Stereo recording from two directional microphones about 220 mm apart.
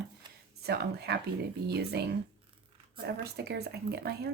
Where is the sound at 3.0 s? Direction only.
45° right (ahead or behind).